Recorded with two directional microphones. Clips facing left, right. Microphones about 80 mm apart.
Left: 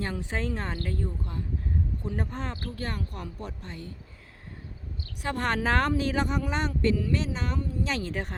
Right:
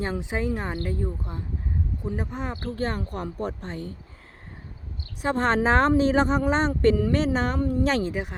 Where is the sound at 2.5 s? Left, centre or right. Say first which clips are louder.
Right 6 dB; right.